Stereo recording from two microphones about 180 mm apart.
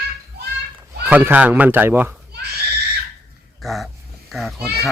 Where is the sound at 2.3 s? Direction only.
60° right (ahead or behind).